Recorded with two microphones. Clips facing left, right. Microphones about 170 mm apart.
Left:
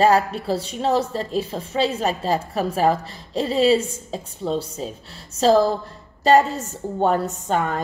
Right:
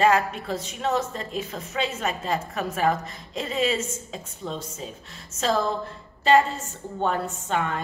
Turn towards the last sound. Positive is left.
turn(degrees=40)  # may be behind; listen again after turning